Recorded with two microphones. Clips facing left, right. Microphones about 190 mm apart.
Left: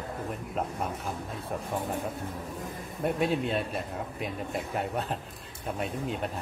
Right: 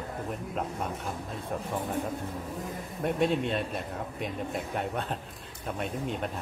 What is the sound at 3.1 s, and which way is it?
A man's voice, centre (ahead or behind).